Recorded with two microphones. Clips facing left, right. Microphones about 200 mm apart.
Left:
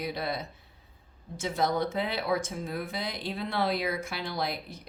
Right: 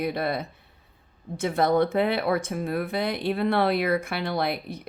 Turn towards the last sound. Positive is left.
turn(degrees=-60)  # may be behind; listen again after turning